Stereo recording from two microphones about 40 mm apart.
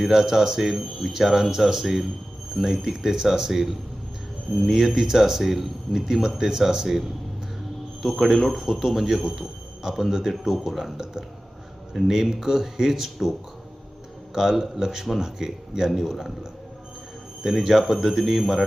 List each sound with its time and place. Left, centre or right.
0.0 s speech: centre
8.0 s speech: centre
10.9 s speech: centre
14.3 s speech: centre